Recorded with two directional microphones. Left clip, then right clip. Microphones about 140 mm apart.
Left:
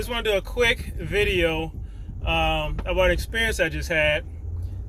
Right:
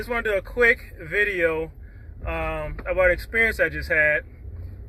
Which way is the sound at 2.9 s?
20° left (ahead or behind).